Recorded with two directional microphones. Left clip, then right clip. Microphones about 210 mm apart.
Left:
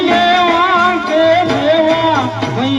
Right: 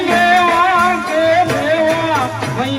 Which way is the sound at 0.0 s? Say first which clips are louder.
Left 1 dB; 30° left (ahead or behind).